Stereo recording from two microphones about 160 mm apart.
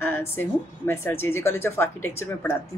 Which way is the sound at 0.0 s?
15° left (ahead or behind).